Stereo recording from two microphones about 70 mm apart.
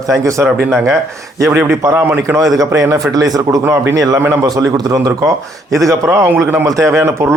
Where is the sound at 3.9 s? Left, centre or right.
Right.